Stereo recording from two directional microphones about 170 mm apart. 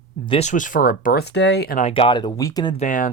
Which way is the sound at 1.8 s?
35° left (ahead or behind).